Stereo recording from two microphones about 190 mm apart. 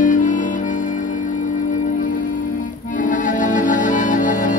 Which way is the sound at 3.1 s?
40° left (ahead or behind).